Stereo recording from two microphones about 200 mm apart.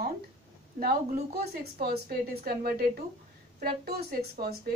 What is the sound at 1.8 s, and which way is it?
A woman's voice, 50° right (ahead or behind).